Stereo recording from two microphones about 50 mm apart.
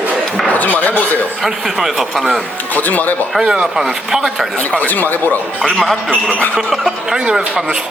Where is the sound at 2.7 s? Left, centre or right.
Left.